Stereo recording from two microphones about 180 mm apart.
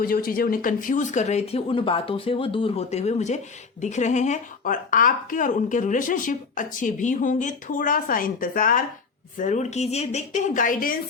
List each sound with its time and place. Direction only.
0.0 s speech: 55° left (ahead or behind)